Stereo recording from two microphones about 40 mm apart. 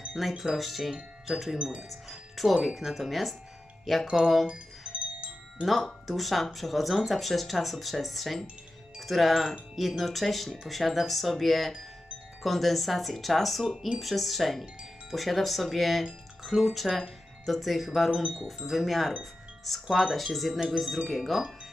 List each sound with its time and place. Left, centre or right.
0.2 s speech: centre
4.4 s music: right
5.8 s speech: centre
18.1 s speech: right
18.6 s speech: centre